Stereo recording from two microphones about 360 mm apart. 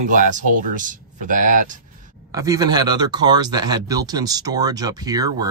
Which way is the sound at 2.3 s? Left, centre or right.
Centre.